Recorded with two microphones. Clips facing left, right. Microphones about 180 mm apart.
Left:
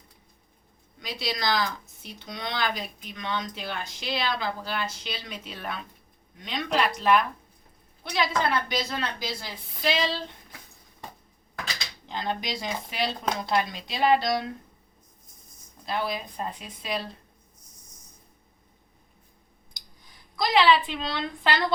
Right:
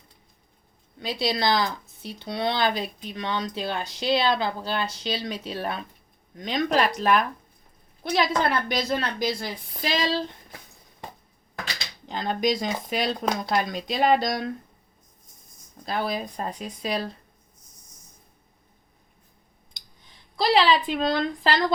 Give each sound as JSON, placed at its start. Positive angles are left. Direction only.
{"t": 1.2, "sound": "speech", "side_deg": -30}
{"t": 8.1, "sound": "a woman's voice", "side_deg": -45}
{"t": 12.0, "sound": "a woman's voice", "side_deg": -45}
{"t": 15.9, "sound": "speech", "side_deg": -40}
{"t": 19.8, "sound": "clicking", "side_deg": -25}
{"t": 20.3, "sound": "speech", "side_deg": -35}